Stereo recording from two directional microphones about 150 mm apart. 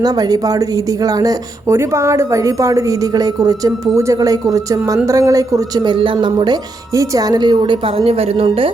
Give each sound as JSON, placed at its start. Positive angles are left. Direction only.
{"t": 0.0, "sound": "speech", "side_deg": -25}